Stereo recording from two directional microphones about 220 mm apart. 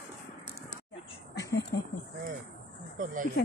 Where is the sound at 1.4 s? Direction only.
50° left (ahead or behind).